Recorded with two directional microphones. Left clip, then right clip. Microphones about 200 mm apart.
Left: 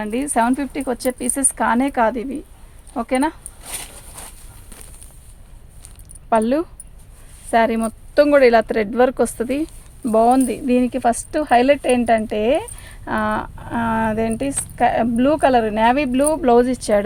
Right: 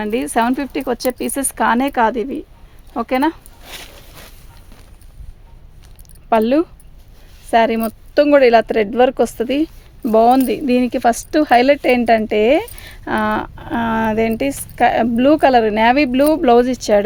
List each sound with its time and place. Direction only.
0.0 s speech: 50° right (ahead or behind)
6.3 s speech: 40° right (ahead or behind)
10.0 s speech: 40° right (ahead or behind)